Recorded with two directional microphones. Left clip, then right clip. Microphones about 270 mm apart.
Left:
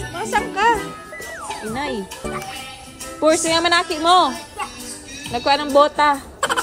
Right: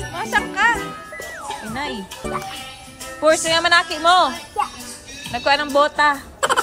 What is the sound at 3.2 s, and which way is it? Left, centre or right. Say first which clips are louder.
A woman's voice: even; right.